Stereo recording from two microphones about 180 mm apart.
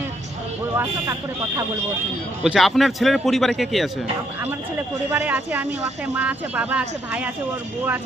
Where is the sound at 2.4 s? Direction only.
Centre (ahead or behind).